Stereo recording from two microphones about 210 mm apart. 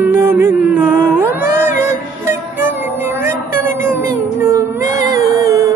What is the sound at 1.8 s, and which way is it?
Music, 10° right (ahead or behind).